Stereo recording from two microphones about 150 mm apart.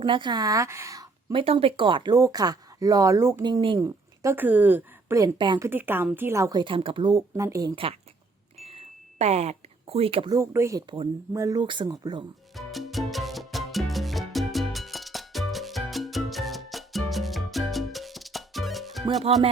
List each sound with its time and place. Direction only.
0.0 s speech: 30° right (ahead or behind)
1.3 s speech: 35° right (ahead or behind); by 3.4 s 20° right (ahead or behind)
3.4 s speech: 30° right (ahead or behind)
3.8 s a woman's voice: 20° right (ahead or behind)
8.6 s chime: 45° right (ahead or behind)
10.3 s speech: 20° right (ahead or behind)
11.6 s speech: 30° right (ahead or behind)
12.5 s music: centre (ahead or behind)
19.2 s music: 40° right (ahead or behind)